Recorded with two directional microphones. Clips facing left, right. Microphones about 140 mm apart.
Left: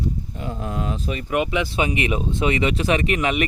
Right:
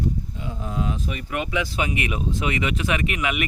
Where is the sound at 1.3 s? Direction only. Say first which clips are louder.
Left 5 dB; 20° left (ahead or behind).